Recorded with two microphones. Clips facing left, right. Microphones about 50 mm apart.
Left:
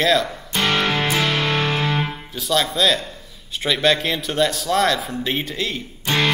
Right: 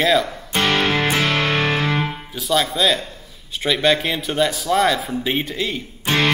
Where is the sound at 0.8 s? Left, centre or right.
Right.